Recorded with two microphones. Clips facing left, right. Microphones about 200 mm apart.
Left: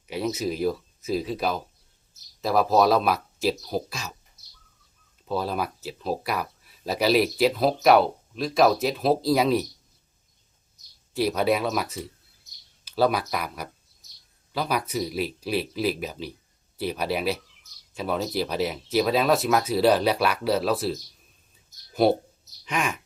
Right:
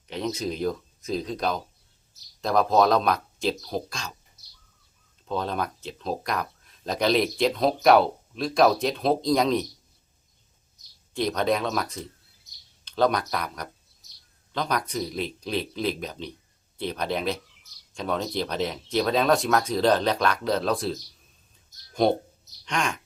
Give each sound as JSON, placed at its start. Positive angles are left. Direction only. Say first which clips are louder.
{"t": 0.1, "sound": "speech", "louder": "left 2 dB", "side_deg": 5}
{"t": 5.2, "sound": "speech", "louder": "left 1 dB", "side_deg": 5}
{"t": 11.1, "sound": "speech", "louder": "left 2 dB", "side_deg": 5}